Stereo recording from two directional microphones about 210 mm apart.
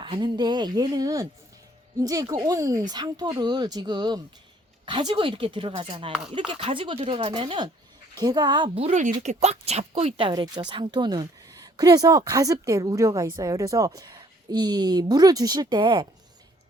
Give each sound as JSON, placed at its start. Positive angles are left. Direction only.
{"t": 0.0, "sound": "speech", "side_deg": -20}
{"t": 6.1, "sound": "speech", "side_deg": -5}
{"t": 6.5, "sound": "speech", "side_deg": -25}